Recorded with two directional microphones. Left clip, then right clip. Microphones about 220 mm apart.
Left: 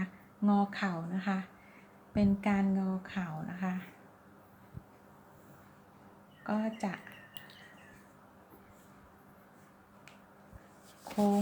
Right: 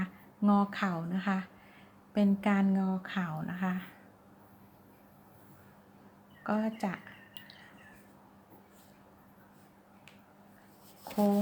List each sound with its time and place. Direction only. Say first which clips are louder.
0.0 s a woman's voice: right 2 dB; 20° right (ahead or behind)
6.4 s speech: right 2 dB; 20° right (ahead or behind)